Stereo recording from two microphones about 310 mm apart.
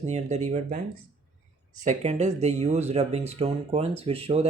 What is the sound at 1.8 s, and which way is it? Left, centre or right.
Speech, right.